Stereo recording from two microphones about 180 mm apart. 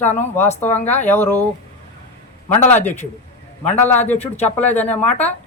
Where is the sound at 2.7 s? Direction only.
10° left (ahead or behind).